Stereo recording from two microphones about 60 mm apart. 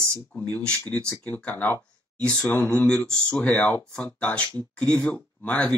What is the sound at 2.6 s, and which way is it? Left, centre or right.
Speech, centre.